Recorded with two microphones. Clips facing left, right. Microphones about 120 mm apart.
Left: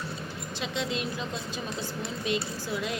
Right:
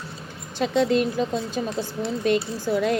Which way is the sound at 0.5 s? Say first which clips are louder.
Right 12 dB; 50° right (ahead or behind).